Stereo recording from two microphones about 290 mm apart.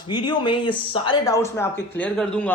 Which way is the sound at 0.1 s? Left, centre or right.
Centre.